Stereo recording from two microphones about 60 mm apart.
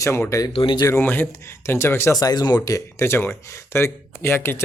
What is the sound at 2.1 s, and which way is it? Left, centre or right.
Speech, left.